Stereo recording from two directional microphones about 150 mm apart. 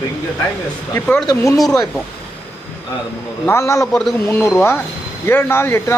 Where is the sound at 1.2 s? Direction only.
20° left (ahead or behind).